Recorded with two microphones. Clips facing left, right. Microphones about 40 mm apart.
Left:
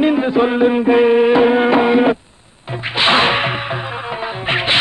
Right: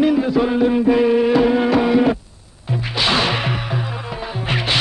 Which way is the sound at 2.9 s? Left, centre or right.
Left.